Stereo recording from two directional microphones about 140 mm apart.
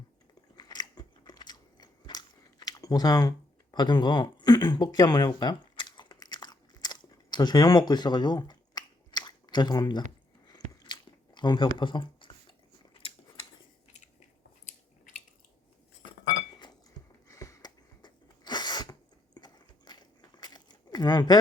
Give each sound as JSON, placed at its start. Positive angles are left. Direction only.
{"t": 0.5, "sound": "biting", "side_deg": 30}
{"t": 10.7, "sound": "chewing", "side_deg": 30}
{"t": 17.2, "sound": "sneeze", "side_deg": 25}